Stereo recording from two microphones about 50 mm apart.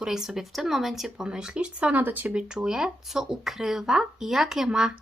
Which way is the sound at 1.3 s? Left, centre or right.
Centre.